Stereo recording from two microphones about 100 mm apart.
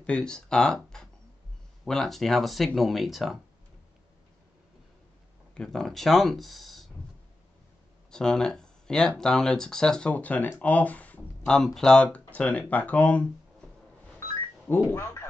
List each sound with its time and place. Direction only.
0.0 s speech: 10° left (ahead or behind)
5.5 s speech: 5° left (ahead or behind)
8.1 s speech: 5° left (ahead or behind)
14.2 s a sound: 20° left (ahead or behind)